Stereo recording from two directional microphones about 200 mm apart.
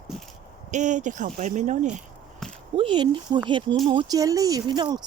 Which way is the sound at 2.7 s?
25° right (ahead or behind).